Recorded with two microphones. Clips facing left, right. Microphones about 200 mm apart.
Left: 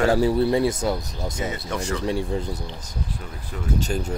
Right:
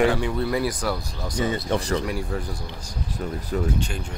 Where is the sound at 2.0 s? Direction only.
25° left (ahead or behind).